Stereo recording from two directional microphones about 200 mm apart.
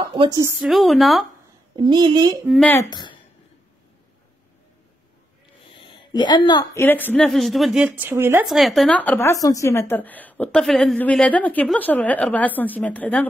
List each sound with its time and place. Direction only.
0.0 s a woman's voice: 25° right (ahead or behind)
0.7 s a woman's voice: centre (ahead or behind)
1.8 s a woman's voice: 20° right (ahead or behind)
2.4 s a woman's voice: centre (ahead or behind)
2.9 s speech: 20° left (ahead or behind)
5.8 s a woman's voice: 25° left (ahead or behind); by 8.5 s 10° right (ahead or behind)
8.5 s a woman's voice: centre (ahead or behind)